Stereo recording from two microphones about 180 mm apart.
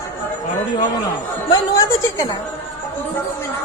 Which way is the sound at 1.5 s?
20° left (ahead or behind).